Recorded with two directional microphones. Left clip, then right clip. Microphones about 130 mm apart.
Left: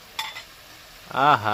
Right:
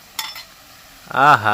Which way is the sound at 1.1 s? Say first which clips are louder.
Right 6 dB; 35° right (ahead or behind).